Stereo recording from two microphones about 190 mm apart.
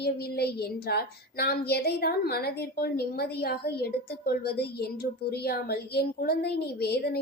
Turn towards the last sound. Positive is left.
turn(degrees=55)  # may be behind; listen again after turning